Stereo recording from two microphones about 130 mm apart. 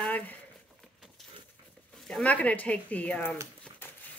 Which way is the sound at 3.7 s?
5° left (ahead or behind).